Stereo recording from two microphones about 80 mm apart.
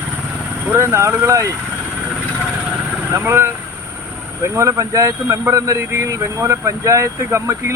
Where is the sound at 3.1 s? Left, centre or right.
Right.